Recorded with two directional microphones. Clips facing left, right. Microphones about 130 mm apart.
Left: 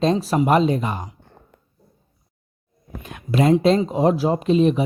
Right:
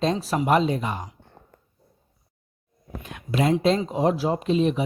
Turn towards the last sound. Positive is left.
turn(degrees=40)  # may be behind; listen again after turning